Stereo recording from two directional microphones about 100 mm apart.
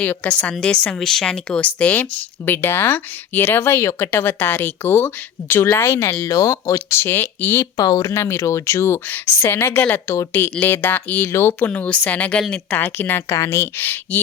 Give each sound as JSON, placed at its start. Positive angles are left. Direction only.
{"t": 0.0, "sound": "speech", "side_deg": 15}
{"t": 7.8, "sound": "speech", "side_deg": 35}
{"t": 11.7, "sound": "speech", "side_deg": 15}